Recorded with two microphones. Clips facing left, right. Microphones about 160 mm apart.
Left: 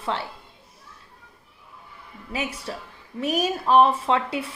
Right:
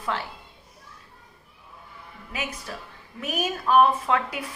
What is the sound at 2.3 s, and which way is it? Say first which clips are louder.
A child's voice: left 4 dB; 30° left (ahead or behind).